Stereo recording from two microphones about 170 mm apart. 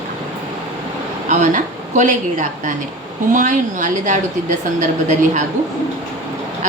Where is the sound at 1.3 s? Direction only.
45° right (ahead or behind).